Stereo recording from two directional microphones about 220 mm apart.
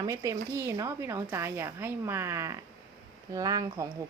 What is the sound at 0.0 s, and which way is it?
Speech, 15° right (ahead or behind).